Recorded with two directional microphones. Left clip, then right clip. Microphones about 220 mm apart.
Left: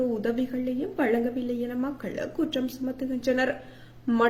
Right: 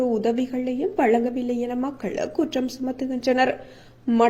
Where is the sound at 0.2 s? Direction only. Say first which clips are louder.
Right 5 dB; 25° right (ahead or behind).